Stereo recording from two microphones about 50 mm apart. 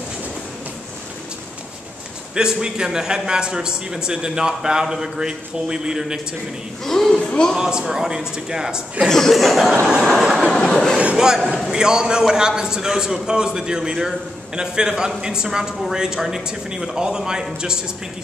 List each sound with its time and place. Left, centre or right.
2.3 s a man's voice: centre
6.8 s speech: centre
7.2 s speech: centre
7.5 s a man's voice: centre
9.1 s speech: centre
9.8 s a sound: centre
10.3 s train: centre
11.1 s a man's voice: centre